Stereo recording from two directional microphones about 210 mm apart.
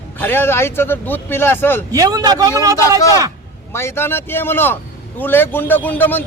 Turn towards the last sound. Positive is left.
turn(degrees=10)  # may be behind; listen again after turning